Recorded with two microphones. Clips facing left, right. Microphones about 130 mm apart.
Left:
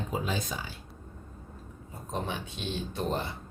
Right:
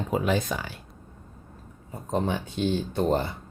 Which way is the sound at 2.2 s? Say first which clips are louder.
Right 9 dB; 40° right (ahead or behind).